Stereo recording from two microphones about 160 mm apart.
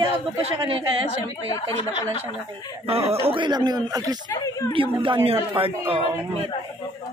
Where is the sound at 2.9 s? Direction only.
40° right (ahead or behind).